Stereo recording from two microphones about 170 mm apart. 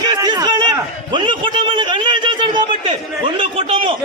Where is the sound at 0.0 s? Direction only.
25° right (ahead or behind).